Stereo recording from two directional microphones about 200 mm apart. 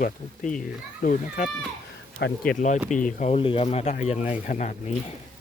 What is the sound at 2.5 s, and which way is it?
Speech, 40° left (ahead or behind).